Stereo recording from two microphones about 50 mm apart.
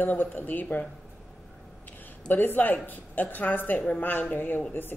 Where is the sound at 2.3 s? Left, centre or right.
Left.